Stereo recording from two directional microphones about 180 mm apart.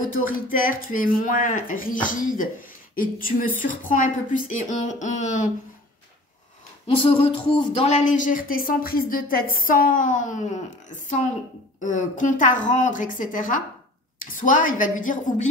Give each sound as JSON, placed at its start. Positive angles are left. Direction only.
{"t": 0.0, "sound": "a man's voice", "side_deg": 50}
{"t": 6.9, "sound": "a man's voice", "side_deg": 30}
{"t": 11.8, "sound": "a man's voice", "side_deg": 45}